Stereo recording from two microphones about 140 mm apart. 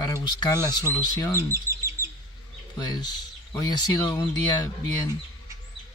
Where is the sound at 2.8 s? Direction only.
30° left (ahead or behind).